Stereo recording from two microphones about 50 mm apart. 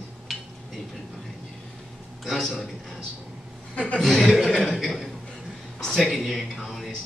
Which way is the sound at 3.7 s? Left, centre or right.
Left.